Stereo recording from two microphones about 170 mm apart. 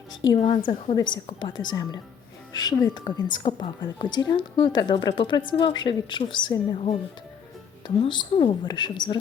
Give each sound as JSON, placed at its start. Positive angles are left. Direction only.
{"t": 0.3, "sound": "a woman's voice", "side_deg": 45}
{"t": 0.7, "sound": "a woman's voice", "side_deg": 30}